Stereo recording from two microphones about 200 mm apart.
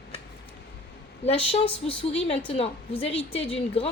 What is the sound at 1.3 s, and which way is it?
A woman's voice, 30° left (ahead or behind).